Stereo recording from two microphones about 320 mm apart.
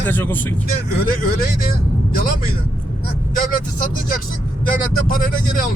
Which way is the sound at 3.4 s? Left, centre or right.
Left.